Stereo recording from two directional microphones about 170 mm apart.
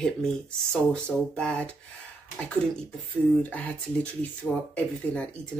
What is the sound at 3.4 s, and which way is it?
Speech, 10° left (ahead or behind).